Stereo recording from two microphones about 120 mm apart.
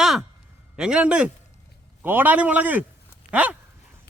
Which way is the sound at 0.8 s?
5° right (ahead or behind).